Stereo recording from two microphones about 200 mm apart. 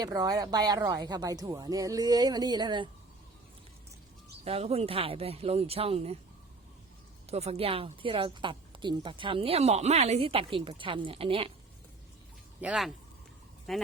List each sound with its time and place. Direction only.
0.0 s a woman's voice: 20° right (ahead or behind)
4.4 s a woman's voice: 30° right (ahead or behind)
7.3 s a woman's voice: 30° right (ahead or behind)
12.6 s speech: centre (ahead or behind)